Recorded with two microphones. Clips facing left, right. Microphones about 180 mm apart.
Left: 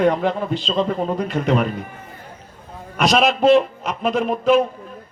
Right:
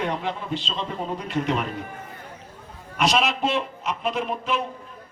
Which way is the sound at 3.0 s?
45° left (ahead or behind).